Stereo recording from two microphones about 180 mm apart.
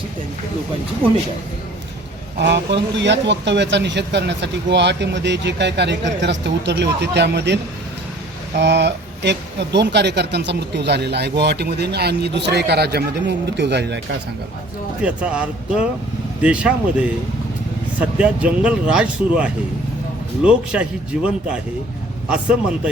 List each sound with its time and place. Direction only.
2.4 s speech: 75° right (ahead or behind)
15.0 s speech: 5° right (ahead or behind)